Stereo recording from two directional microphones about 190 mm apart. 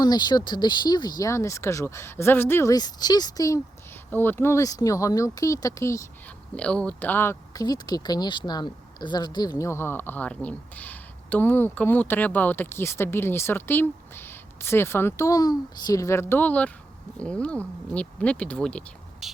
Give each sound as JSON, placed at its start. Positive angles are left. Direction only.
{"t": 0.0, "sound": "speech", "side_deg": 20}